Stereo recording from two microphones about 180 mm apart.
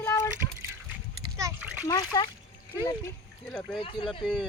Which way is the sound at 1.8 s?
20° left (ahead or behind).